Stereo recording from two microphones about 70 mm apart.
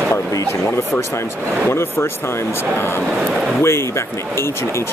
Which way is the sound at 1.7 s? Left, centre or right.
Left.